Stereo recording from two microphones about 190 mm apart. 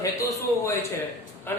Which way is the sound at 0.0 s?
15° left (ahead or behind).